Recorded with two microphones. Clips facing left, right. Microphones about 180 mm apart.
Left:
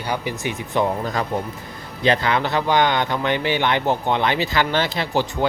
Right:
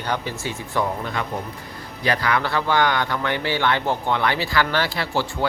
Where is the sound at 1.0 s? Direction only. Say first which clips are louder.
Left 3 dB; 40° left (ahead or behind).